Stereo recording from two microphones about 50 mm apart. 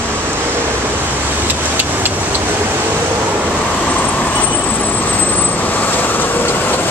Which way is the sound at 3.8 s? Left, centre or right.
Left.